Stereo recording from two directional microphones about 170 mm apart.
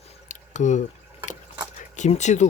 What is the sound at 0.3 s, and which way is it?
Drip, 45° left (ahead or behind).